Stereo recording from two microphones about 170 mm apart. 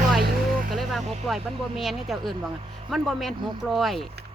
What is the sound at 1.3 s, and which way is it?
Speech, centre (ahead or behind).